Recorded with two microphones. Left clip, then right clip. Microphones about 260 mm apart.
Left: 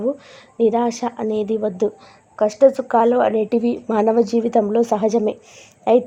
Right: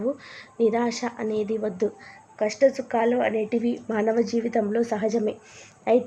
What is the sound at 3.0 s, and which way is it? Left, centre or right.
A woman's voice, left.